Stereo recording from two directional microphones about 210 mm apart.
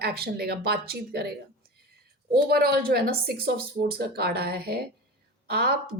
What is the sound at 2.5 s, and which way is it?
A woman's voice, 45° right (ahead or behind).